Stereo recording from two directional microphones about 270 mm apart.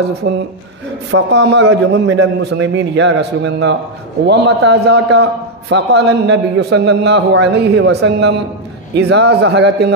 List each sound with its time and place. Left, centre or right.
0.2 s a man's voice: right